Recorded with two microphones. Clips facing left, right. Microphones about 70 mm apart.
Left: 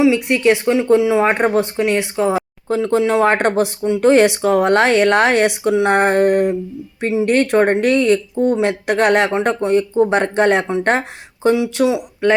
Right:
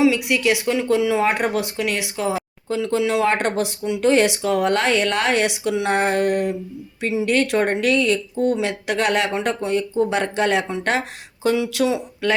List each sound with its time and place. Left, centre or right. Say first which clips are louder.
0.3 s speech: left 5 dB; left
3.8 s speech: left 5 dB; left
4.1 s speech: left 5 dB; left
7.0 s speech: left 5 dB; left
7.3 s speech: left 5 dB; left
8.4 s speech: left 4 dB; left
8.6 s speech: left 6 dB; left
9.3 s speech: left 6 dB; left
11.4 s speech: left 4 dB; left